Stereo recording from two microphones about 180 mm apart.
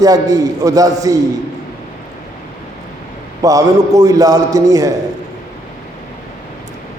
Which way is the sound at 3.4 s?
20° right (ahead or behind).